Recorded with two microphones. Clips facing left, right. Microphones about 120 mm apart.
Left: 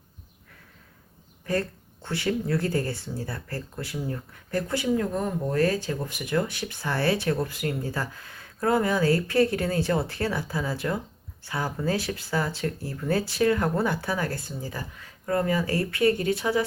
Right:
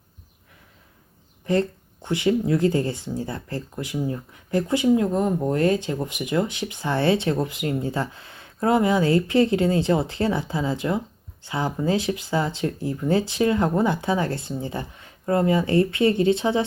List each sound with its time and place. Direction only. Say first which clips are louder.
1.5 s speech: right 5 dB; 20° right (ahead or behind)